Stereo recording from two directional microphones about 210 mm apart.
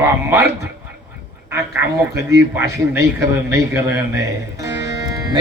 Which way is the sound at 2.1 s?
15° right (ahead or behind).